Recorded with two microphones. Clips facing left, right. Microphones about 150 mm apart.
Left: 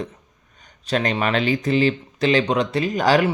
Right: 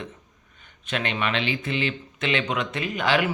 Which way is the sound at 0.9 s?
35° left (ahead or behind).